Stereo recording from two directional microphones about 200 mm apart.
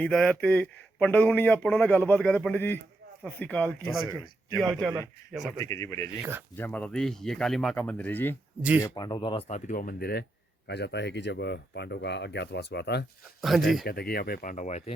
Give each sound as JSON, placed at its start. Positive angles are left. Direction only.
{"t": 0.0, "sound": "speech", "side_deg": 5}
{"t": 5.5, "sound": "speech", "side_deg": 15}
{"t": 8.8, "sound": "speech", "side_deg": 20}
{"t": 9.5, "sound": "speech", "side_deg": 40}
{"t": 13.4, "sound": "speech", "side_deg": 0}
{"t": 13.8, "sound": "speech", "side_deg": 50}